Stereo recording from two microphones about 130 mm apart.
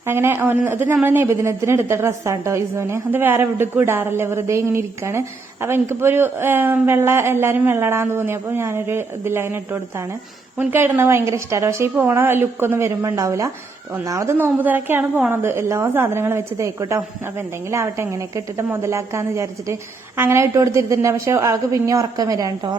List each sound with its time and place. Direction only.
0.1 s a woman's voice: 20° right (ahead or behind)
10.6 s a woman's voice: 15° right (ahead or behind)